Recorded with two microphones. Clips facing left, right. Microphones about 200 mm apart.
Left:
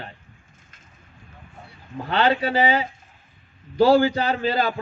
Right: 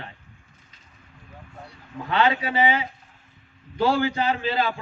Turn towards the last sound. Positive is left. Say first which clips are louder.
# left 2 dB
turn(degrees=40)  # may be behind; listen again after turning